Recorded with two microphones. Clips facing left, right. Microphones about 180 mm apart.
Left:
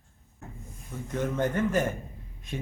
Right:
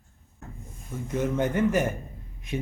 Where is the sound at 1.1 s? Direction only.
10° right (ahead or behind).